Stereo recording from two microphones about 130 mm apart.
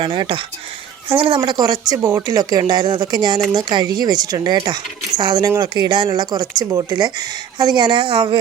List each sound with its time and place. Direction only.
0.0 s speech: 35° right (ahead or behind)